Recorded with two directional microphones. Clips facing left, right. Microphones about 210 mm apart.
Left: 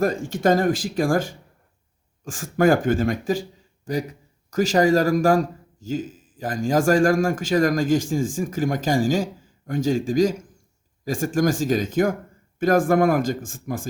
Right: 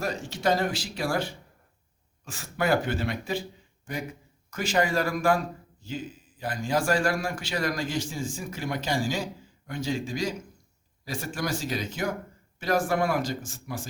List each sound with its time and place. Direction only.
0.0 s a man's voice: 50° left (ahead or behind)